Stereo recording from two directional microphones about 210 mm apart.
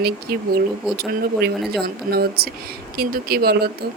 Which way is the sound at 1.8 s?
45° right (ahead or behind).